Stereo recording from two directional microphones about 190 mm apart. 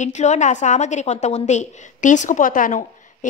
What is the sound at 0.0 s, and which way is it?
A woman's voice, 40° left (ahead or behind).